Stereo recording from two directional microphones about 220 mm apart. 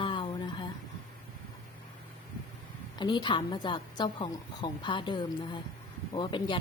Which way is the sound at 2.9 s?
20° left (ahead or behind).